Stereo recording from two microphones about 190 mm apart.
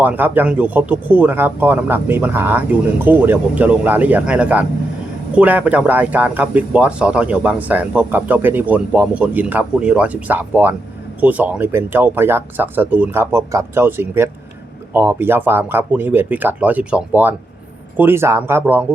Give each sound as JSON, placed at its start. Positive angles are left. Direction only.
{"t": 0.0, "sound": "speech", "side_deg": -10}